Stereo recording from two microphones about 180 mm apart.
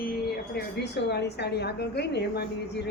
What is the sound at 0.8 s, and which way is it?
A woman's voice, 70° left (ahead or behind).